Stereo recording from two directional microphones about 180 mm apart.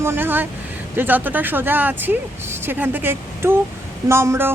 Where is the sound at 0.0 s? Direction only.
15° right (ahead or behind).